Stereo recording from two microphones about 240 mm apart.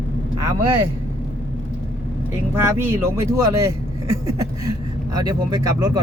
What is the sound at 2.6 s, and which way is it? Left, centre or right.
Speech, centre.